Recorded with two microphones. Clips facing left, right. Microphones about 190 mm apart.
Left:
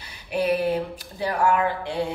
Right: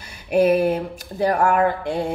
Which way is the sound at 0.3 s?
45° right (ahead or behind).